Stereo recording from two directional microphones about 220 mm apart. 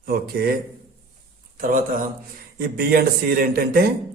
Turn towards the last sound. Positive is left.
turn(degrees=-45)  # may be behind; listen again after turning